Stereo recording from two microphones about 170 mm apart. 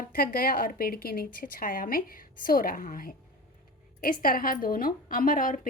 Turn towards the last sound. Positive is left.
turn(degrees=55)  # may be behind; listen again after turning